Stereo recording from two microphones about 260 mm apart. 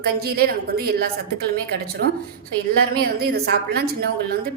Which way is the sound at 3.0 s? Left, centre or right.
Right.